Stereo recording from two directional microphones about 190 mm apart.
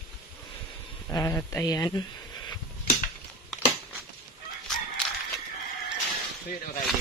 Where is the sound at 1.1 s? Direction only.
15° left (ahead or behind).